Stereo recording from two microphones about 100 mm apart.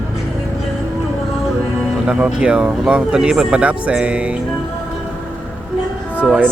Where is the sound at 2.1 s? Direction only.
10° right (ahead or behind).